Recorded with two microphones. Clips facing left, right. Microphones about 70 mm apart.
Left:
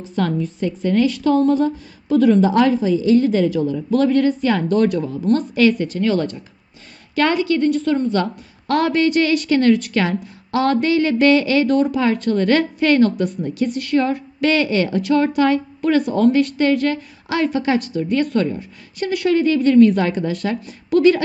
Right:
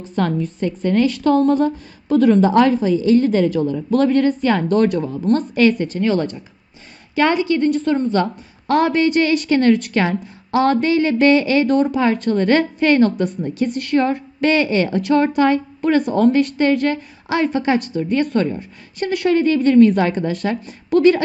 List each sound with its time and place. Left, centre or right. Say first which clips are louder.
0.0 s a woman's voice: right 1 dB; right
7.4 s a woman's voice: even; right
9.0 s a woman's voice: even; right
14.9 s a woman's voice: right 1 dB; right